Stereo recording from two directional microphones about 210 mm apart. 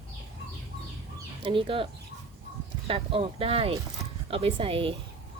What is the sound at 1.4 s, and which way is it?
Speech, 25° right (ahead or behind).